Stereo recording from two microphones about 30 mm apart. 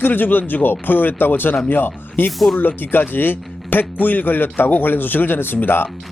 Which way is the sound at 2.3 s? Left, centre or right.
Centre.